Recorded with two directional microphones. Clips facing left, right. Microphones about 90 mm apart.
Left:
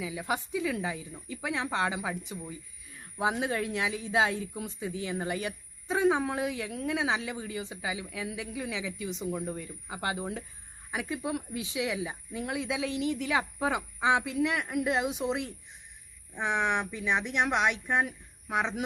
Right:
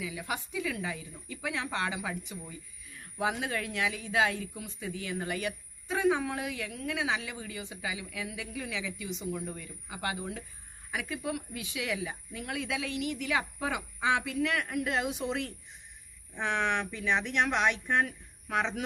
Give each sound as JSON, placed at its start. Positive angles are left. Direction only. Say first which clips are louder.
{"t": 0.0, "sound": "speech", "louder": "left 4 dB", "side_deg": 25}